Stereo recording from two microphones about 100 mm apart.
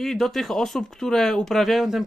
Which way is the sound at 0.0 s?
Centre (ahead or behind).